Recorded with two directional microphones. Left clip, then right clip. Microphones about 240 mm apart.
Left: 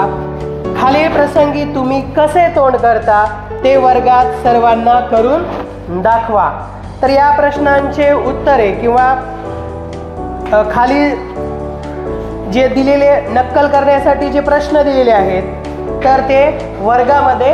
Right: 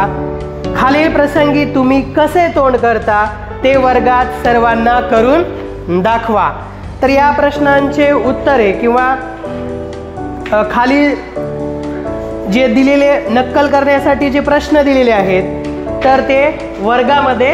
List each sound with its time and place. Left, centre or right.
0.7 s a woman's voice: right
10.5 s a woman's voice: right
12.4 s a woman's voice: right